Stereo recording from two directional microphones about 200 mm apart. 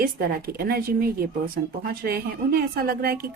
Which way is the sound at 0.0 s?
50° right (ahead or behind).